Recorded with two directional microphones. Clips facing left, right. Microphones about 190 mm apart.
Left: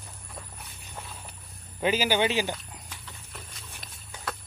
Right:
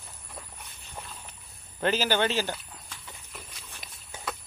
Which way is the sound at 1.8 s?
10° left (ahead or behind).